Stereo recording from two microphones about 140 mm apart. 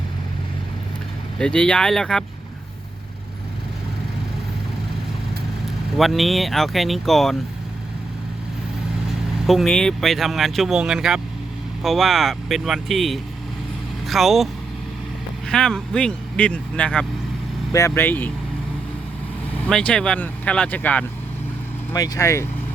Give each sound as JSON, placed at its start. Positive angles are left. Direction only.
{"t": 1.4, "sound": "speech", "side_deg": 5}
{"t": 6.0, "sound": "speech", "side_deg": 0}
{"t": 9.5, "sound": "speech", "side_deg": 0}
{"t": 17.7, "sound": "speech", "side_deg": 20}
{"t": 19.6, "sound": "speech", "side_deg": 10}
{"t": 21.9, "sound": "speech", "side_deg": 25}